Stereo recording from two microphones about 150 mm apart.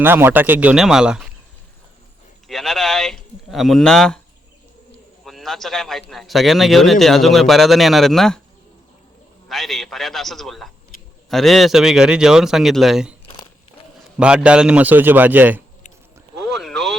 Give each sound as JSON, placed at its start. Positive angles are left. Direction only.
{"t": 0.0, "sound": "a man's voice", "side_deg": -15}
{"t": 2.5, "sound": "speech", "side_deg": 0}
{"t": 5.2, "sound": "a man's voice", "side_deg": 0}
{"t": 9.5, "sound": "a man's voice", "side_deg": 0}
{"t": 13.2, "sound": "crumpling", "side_deg": 30}
{"t": 14.2, "sound": "a man's voice", "side_deg": -5}
{"t": 16.5, "sound": "boat", "side_deg": 0}